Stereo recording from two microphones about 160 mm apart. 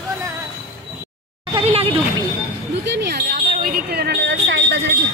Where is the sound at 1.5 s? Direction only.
35° right (ahead or behind).